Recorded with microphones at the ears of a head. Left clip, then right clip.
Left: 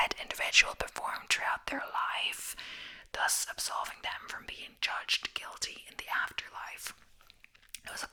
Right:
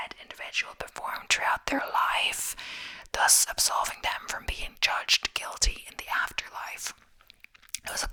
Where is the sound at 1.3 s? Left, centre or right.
Right.